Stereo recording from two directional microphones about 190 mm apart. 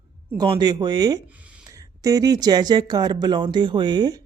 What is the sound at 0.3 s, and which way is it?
Speech, 25° right (ahead or behind).